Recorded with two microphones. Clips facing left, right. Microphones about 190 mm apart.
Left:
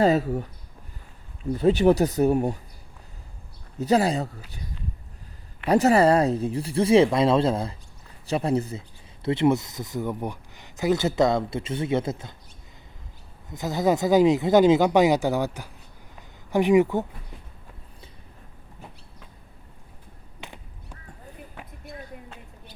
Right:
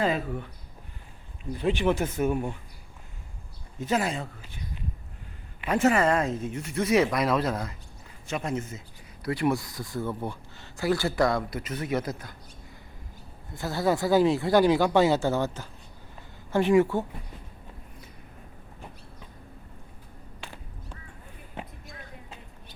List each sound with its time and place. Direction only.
0.0 s speech: 40° left (ahead or behind)
1.5 s speech: 40° left (ahead or behind)
3.8 s speech: 35° left (ahead or behind)
5.6 s speech: 35° left (ahead or behind)
13.5 s speech: 20° left (ahead or behind)
20.4 s duck: 20° left (ahead or behind)
21.6 s basketball bounce: 20° right (ahead or behind)